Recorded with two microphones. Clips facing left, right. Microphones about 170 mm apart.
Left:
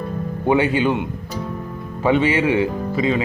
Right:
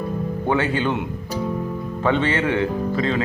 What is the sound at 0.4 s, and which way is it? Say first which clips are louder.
Speech: left 5 dB; 15° left (ahead or behind).